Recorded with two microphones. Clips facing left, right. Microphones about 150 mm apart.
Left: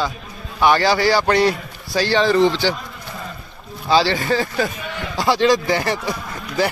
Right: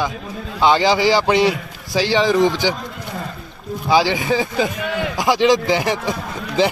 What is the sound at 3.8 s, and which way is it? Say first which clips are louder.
A man's voice: right 1 dB; 15° right (ahead or behind).